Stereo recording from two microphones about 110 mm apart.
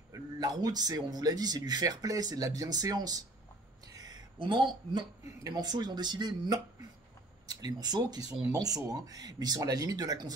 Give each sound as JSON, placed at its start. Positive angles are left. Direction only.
{"t": 0.1, "sound": "speech", "side_deg": -35}
{"t": 3.8, "sound": "a sound", "side_deg": -35}
{"t": 5.2, "sound": "speech", "side_deg": -35}